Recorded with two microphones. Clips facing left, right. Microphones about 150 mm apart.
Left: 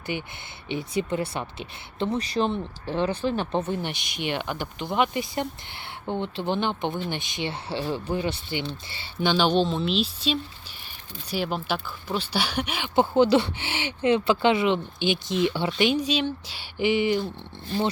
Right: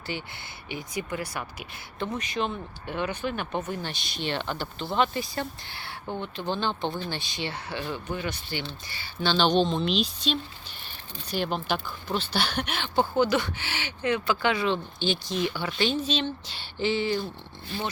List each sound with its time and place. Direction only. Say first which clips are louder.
0.1 s speech: left 3 dB; 20° left (ahead or behind)
9.2 s speech: left 1 dB; 10° left (ahead or behind)
13.0 s speech: left 5 dB; 25° left (ahead or behind)
15.9 s speech: left 3 dB; 10° left (ahead or behind)